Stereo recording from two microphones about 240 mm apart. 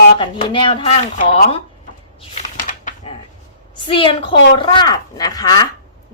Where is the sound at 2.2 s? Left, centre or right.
Left.